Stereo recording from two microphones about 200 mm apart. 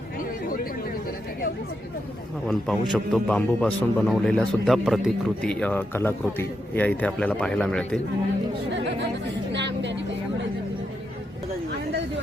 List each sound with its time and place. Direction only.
0.4 s chatter: 45° left (ahead or behind)
2.5 s speech: centre (ahead or behind)
8.7 s speech: 60° right (ahead or behind)
9.5 s vehicle: 60° right (ahead or behind)